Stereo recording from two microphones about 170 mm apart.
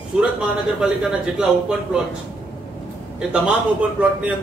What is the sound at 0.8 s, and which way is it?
Speech, 5° right (ahead or behind).